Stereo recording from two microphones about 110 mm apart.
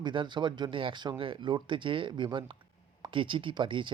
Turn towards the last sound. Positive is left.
turn(degrees=-50)  # may be behind; listen again after turning